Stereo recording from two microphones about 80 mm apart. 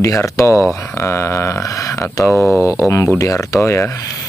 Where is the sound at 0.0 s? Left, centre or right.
Left.